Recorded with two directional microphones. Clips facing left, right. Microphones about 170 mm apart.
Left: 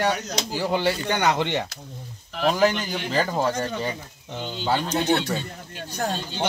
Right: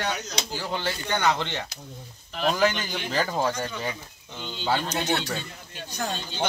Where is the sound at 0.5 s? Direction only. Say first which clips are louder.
Left 8 dB; 15° left (ahead or behind).